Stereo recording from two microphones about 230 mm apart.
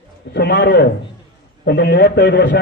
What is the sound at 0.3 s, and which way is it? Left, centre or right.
A man's voice, left.